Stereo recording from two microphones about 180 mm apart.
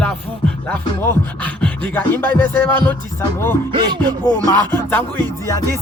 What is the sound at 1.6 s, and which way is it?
Music, 10° left (ahead or behind).